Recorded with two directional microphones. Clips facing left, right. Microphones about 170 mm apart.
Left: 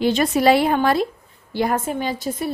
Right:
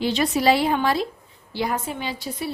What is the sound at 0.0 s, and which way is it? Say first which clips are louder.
A woman's voice: left 4 dB; 50° left (ahead or behind).